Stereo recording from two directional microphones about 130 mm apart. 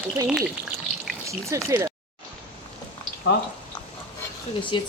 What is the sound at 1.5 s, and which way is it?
Speech, 25° right (ahead or behind).